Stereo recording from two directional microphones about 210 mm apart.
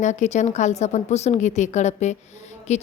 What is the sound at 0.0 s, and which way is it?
A woman's voice, 35° left (ahead or behind).